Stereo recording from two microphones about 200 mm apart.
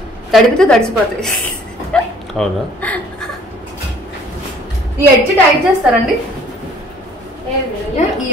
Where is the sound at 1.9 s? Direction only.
5° left (ahead or behind).